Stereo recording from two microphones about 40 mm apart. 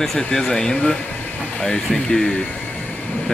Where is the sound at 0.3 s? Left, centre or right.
Centre.